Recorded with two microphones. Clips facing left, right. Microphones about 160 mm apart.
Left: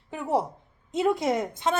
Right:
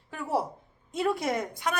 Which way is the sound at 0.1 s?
20° left (ahead or behind).